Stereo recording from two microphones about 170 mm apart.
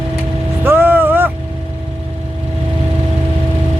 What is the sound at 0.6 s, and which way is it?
Vehicle, 10° right (ahead or behind).